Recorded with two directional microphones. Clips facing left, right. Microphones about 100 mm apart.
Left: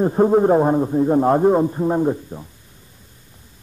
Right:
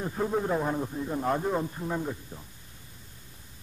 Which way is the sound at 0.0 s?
45° left (ahead or behind).